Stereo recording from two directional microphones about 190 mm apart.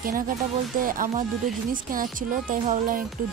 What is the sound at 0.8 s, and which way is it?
Speech, 45° right (ahead or behind).